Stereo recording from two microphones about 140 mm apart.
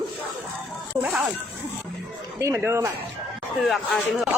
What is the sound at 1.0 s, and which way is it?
Speech, 5° right (ahead or behind).